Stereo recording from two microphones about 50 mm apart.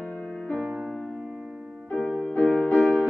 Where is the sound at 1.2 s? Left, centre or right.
Centre.